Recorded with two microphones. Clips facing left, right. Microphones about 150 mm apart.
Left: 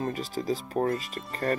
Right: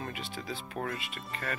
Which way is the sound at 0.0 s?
40° left (ahead or behind).